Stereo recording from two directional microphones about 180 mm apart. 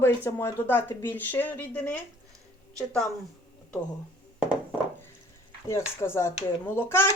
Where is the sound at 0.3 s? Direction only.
15° left (ahead or behind).